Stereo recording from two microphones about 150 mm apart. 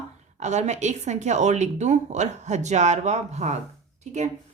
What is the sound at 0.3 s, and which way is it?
A woman's voice, 50° right (ahead or behind).